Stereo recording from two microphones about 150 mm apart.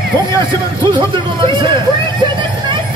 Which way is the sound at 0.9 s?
35° right (ahead or behind).